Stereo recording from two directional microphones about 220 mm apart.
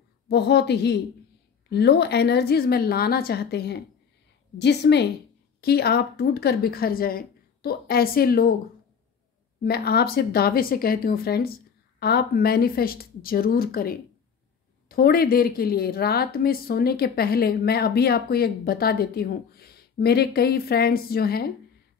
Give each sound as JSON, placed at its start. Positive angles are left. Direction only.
{"t": 0.3, "sound": "speech", "side_deg": 50}
{"t": 9.6, "sound": "speech", "side_deg": 45}